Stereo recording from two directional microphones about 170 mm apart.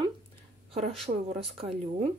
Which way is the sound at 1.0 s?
40° right (ahead or behind).